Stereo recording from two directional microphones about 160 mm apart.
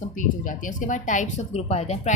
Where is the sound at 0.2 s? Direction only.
55° left (ahead or behind).